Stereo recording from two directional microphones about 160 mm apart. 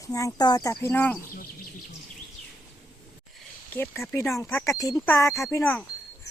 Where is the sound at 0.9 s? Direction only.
10° left (ahead or behind).